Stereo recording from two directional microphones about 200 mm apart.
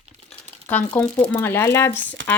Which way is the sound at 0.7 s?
10° left (ahead or behind).